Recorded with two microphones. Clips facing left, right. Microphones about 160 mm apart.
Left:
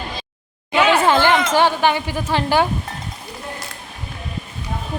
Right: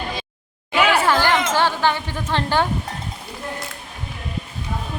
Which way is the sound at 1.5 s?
15° left (ahead or behind).